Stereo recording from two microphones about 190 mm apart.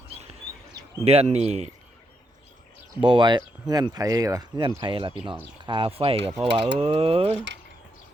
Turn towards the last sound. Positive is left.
turn(degrees=-30)  # may be behind; listen again after turning